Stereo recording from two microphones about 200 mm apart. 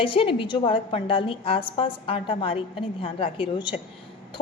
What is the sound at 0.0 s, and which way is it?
A woman's voice, 25° left (ahead or behind).